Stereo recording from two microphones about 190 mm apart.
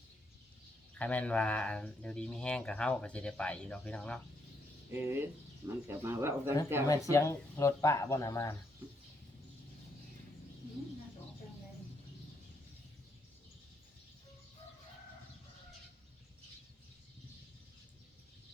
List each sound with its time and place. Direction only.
0.9 s speech: 5° left (ahead or behind)
4.9 s speech: 10° right (ahead or behind)
7.1 s speech: 15° left (ahead or behind)